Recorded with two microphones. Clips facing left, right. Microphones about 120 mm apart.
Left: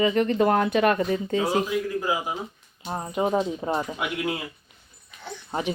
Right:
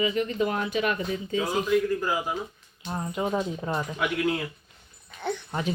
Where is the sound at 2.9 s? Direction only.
25° left (ahead or behind).